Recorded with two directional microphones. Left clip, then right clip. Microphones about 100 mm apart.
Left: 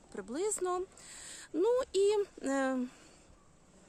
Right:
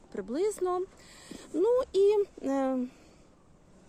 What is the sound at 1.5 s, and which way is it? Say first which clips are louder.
Speech: right 4 dB; 15° left (ahead or behind).